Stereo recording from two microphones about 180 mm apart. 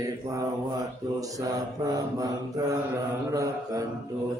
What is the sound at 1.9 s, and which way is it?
Mantra, 20° right (ahead or behind).